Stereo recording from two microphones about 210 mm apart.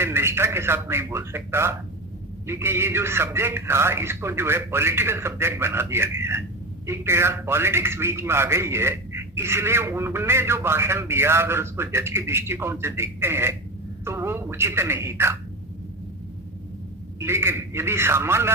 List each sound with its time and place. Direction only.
0.0 s a man's voice: 10° right (ahead or behind)
17.2 s a man's voice: 10° right (ahead or behind)